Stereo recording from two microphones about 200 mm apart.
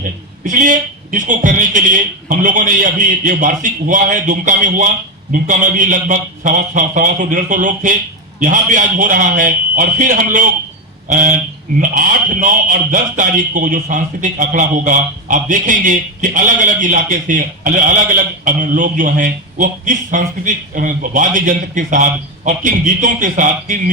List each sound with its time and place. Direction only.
0.0 s speech: 40° right (ahead or behind)